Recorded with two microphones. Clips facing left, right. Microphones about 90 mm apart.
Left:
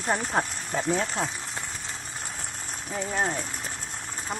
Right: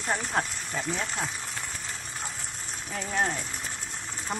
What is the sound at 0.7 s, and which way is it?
Speech, 35° left (ahead or behind).